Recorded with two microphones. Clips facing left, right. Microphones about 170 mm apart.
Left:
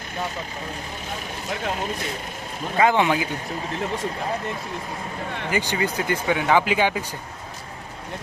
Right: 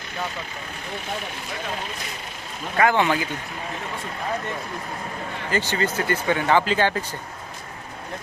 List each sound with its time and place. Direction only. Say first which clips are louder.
2.7 s speech: left 1 dB; 15° left (ahead or behind)
5.5 s speech: right 1 dB; 15° left (ahead or behind)